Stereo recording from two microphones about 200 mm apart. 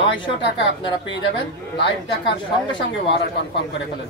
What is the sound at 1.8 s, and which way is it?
A woman's voice, 65° left (ahead or behind).